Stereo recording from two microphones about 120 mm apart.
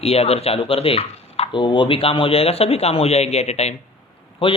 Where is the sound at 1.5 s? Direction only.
45° left (ahead or behind); by 3.8 s 65° left (ahead or behind).